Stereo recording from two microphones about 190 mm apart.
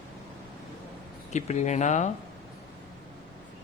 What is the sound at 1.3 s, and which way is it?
Speech, 40° left (ahead or behind).